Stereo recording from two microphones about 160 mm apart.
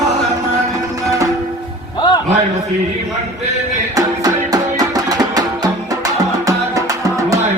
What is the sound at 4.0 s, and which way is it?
Music, 25° right (ahead or behind).